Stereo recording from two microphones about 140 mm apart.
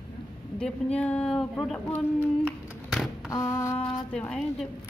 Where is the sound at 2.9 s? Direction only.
Centre (ahead or behind).